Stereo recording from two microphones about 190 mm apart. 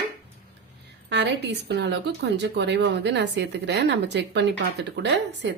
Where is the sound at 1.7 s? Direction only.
65° right (ahead or behind).